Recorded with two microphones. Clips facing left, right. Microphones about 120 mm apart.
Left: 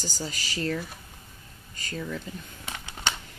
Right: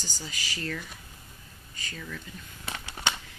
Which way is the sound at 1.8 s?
40° left (ahead or behind).